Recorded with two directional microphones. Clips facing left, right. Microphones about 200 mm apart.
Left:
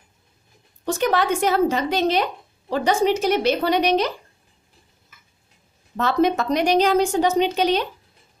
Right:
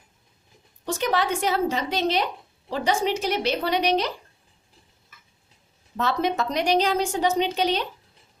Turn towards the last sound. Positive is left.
turn(degrees=50)  # may be behind; listen again after turning